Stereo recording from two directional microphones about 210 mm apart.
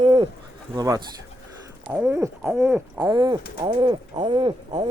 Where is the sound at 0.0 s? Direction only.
20° right (ahead or behind).